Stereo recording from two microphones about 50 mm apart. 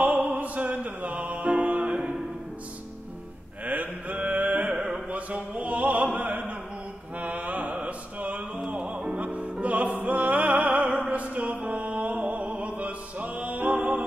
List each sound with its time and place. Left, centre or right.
0.0 s music: right
3.6 s mantra: right
9.1 s music: right